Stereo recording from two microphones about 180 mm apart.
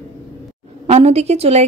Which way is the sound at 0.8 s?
35° right (ahead or behind).